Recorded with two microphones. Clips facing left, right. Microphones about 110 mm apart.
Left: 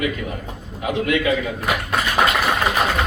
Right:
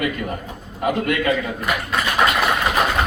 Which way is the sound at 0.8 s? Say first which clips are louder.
Even; 50° right (ahead or behind).